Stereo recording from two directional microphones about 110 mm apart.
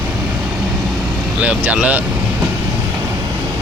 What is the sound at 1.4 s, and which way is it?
Speech, 15° right (ahead or behind).